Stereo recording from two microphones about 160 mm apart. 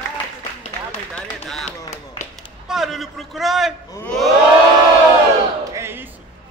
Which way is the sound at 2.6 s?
Centre (ahead or behind).